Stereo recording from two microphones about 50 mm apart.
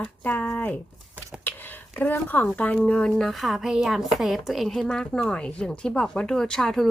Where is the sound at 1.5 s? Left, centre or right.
Left.